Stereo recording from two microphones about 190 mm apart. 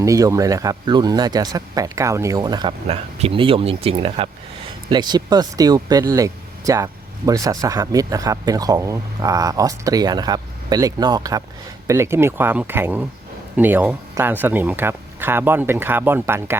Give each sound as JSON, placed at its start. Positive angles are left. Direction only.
{"t": 0.0, "sound": "speech", "side_deg": -15}